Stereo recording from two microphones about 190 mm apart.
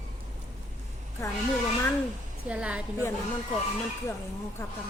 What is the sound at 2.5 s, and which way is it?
Speech, 5° right (ahead or behind).